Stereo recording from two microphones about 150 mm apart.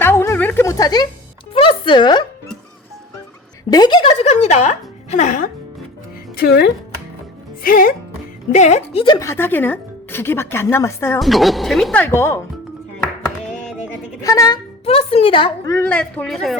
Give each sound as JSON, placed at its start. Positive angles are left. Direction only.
{"t": 0.0, "sound": "a sound", "side_deg": 15}
{"t": 1.5, "sound": "music", "side_deg": 35}
{"t": 3.7, "sound": "a woman's voice", "side_deg": 30}
{"t": 4.4, "sound": "speech", "side_deg": 50}
{"t": 6.3, "sound": "speech", "side_deg": 90}
{"t": 7.6, "sound": "speech", "side_deg": 70}
{"t": 8.5, "sound": "a woman's voice", "side_deg": 50}
{"t": 9.1, "sound": "a woman's voice", "side_deg": 15}
{"t": 11.2, "sound": "speech", "side_deg": 0}
{"t": 12.0, "sound": "a woman's voice", "side_deg": 15}
{"t": 14.2, "sound": "speech", "side_deg": 20}
{"t": 14.8, "sound": "speech", "side_deg": 40}
{"t": 15.6, "sound": "a woman's voice", "side_deg": 15}